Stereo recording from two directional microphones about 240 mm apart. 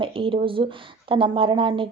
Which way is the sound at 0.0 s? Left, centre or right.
Right.